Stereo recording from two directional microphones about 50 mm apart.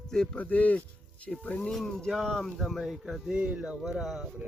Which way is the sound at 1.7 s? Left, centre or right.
Centre.